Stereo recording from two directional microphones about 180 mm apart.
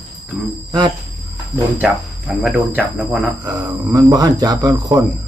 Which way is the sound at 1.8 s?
10° right (ahead or behind).